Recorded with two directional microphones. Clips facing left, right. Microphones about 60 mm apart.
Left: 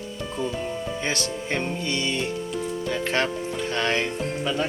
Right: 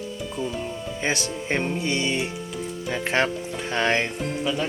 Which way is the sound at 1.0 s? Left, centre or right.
Right.